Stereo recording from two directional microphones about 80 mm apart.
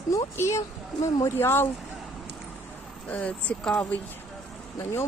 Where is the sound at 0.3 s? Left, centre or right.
Left.